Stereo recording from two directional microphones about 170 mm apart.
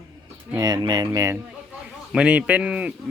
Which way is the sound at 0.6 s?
25° right (ahead or behind).